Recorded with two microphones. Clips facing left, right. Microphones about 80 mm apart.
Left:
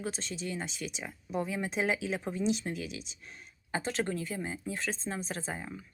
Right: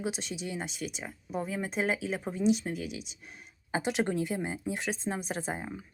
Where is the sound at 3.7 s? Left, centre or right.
Centre.